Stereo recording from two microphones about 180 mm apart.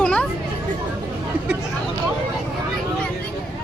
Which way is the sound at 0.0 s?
5° left (ahead or behind).